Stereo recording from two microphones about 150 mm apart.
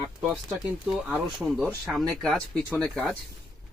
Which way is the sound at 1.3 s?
Centre (ahead or behind).